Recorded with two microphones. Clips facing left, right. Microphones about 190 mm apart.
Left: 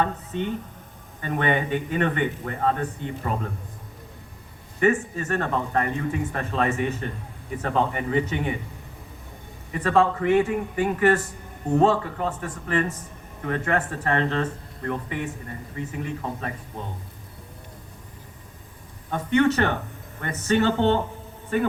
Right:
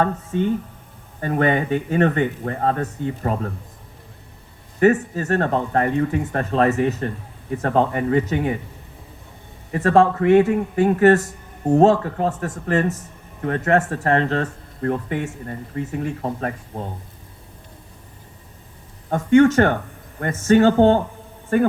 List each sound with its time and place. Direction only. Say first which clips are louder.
0.0 s speech: right 5 dB; 45° right (ahead or behind)
4.8 s a man's voice: right 5 dB; 40° right (ahead or behind)
9.7 s a man's voice: right 5 dB; 45° right (ahead or behind)
19.1 s a man's voice: right 7 dB; 45° right (ahead or behind)